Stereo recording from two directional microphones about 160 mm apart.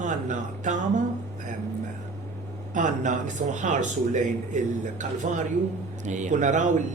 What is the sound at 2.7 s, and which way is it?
Speech, 50° right (ahead or behind).